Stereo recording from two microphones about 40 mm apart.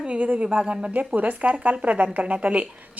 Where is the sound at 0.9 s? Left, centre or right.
Right.